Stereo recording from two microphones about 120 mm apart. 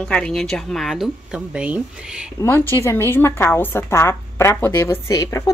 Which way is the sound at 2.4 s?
20° left (ahead or behind).